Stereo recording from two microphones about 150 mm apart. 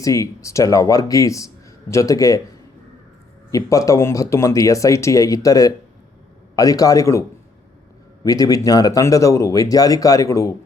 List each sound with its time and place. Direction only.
0.0 s speech: 20° left (ahead or behind)
3.5 s speech: 20° left (ahead or behind)